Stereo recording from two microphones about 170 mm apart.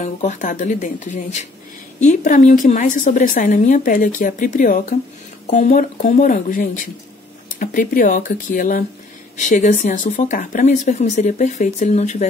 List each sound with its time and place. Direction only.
0.0 s a woman's voice: 45° left (ahead or behind)